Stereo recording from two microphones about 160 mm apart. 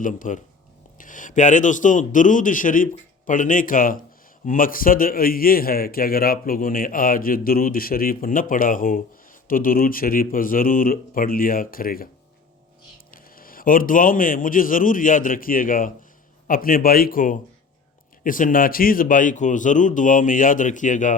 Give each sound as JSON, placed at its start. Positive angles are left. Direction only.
{"t": 0.0, "sound": "a man's voice", "side_deg": 55}
{"t": 13.1, "sound": "a man's voice", "side_deg": 65}